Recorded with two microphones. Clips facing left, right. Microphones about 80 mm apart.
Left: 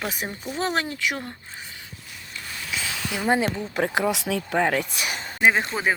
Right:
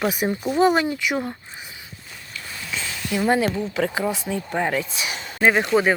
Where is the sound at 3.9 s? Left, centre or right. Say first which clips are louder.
Left 1 dB; left.